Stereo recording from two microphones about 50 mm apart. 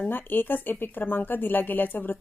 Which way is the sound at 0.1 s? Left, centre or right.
Left.